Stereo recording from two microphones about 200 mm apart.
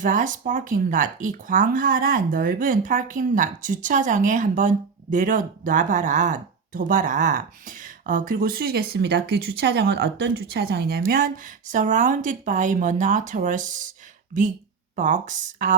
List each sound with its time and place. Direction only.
0.0 s speech: 40° right (ahead or behind)
14.9 s speech: 40° right (ahead or behind)